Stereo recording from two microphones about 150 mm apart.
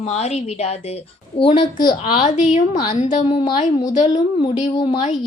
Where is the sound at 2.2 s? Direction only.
50° left (ahead or behind).